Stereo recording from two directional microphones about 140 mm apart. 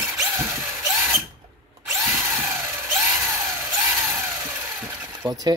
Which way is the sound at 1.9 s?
20° right (ahead or behind).